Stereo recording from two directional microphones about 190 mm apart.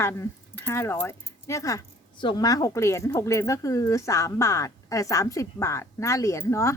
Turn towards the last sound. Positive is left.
turn(degrees=15)  # may be behind; listen again after turning